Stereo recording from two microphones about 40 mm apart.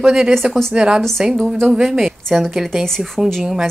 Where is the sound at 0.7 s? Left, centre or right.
Centre.